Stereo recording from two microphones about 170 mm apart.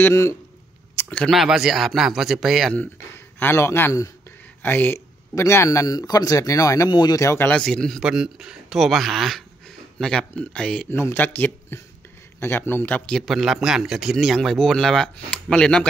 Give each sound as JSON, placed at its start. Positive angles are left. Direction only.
{"t": 0.0, "sound": "a man's voice", "side_deg": 15}
{"t": 0.9, "sound": "a sound", "side_deg": 10}
{"t": 1.3, "sound": "a man's voice", "side_deg": 0}
{"t": 3.3, "sound": "a man's voice", "side_deg": 15}